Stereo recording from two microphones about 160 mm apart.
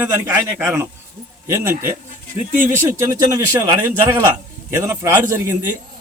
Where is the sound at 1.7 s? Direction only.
60° right (ahead or behind).